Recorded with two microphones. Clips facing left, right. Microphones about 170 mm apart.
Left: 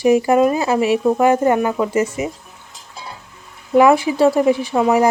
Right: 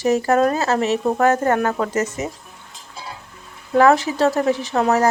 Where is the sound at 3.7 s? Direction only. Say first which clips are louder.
Left 2 dB; 15° left (ahead or behind).